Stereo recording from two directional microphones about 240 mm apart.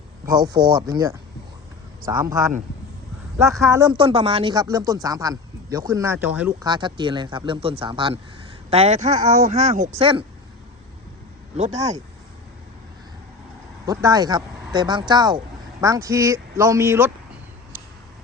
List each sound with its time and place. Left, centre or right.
0.3 s speech: centre
6.7 s a man's voice: centre
11.5 s a man's voice: right
13.8 s speech: centre